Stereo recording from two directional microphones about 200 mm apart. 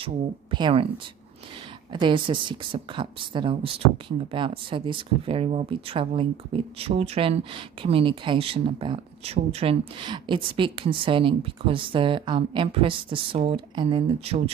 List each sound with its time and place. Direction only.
0.0 s speech: 25° right (ahead or behind)